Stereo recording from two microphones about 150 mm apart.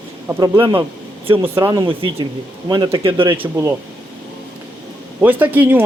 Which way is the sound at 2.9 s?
35° right (ahead or behind).